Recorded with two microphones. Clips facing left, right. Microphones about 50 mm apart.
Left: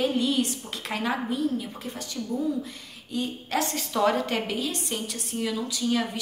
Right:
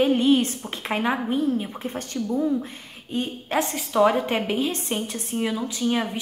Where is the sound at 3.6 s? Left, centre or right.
Centre.